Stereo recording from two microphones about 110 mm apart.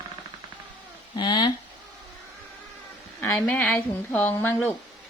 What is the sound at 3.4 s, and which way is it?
A woman's voice, 15° left (ahead or behind).